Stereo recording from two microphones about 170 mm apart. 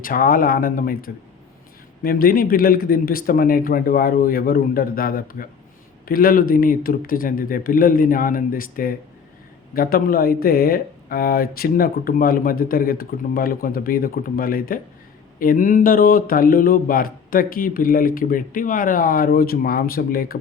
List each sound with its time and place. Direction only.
0.0 s speech: 55° left (ahead or behind)